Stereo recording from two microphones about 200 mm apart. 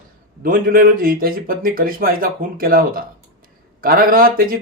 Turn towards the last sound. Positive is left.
turn(degrees=-45)  # may be behind; listen again after turning